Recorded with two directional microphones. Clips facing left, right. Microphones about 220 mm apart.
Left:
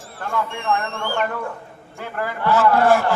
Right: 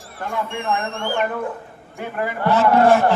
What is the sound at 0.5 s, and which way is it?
A man's voice, 15° right (ahead or behind).